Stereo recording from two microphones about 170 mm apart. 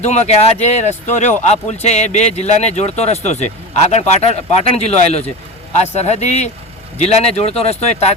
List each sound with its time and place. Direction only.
0.0 s speech: 40° left (ahead or behind)